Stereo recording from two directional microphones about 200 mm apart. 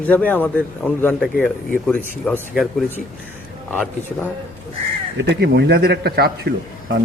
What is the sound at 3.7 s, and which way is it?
Speech, 5° left (ahead or behind).